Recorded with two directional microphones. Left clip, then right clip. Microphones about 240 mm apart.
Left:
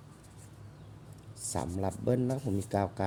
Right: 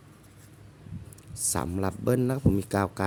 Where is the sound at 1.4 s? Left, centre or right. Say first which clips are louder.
Right 4 dB; right.